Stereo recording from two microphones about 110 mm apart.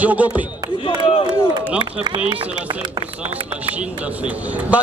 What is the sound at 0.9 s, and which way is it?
Speech, 50° left (ahead or behind).